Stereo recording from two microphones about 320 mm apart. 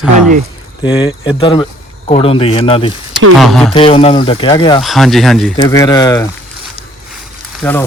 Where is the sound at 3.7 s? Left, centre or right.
Centre.